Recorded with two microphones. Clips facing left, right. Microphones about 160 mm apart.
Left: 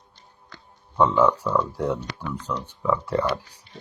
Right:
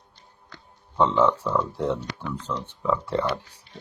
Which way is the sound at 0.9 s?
25° right (ahead or behind).